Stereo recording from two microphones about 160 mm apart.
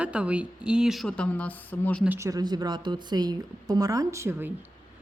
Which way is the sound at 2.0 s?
15° right (ahead or behind).